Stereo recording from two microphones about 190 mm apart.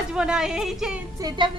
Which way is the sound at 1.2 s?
25° right (ahead or behind).